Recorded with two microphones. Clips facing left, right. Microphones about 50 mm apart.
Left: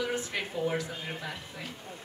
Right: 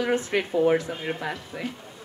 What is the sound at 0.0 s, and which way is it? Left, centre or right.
Speech, right.